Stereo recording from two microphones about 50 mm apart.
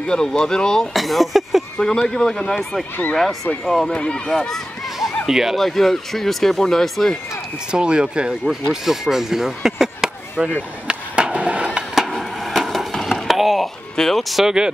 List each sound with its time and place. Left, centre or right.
0.0 s speech: centre
0.9 s speech: centre
1.8 s speech: centre
3.6 s speech: centre
3.9 s speech: centre
4.3 s a sound: centre
5.2 s speech: centre
5.6 s speech: centre
7.7 s speech: centre
10.5 s skateboard: right
11.9 s skateboard: centre
13.9 s speech: centre
14.4 s speech: centre